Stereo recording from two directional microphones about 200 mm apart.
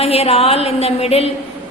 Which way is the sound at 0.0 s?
30° left (ahead or behind).